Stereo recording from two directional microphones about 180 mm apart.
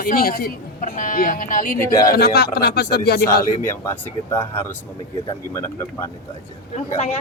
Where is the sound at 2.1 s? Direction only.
65° left (ahead or behind).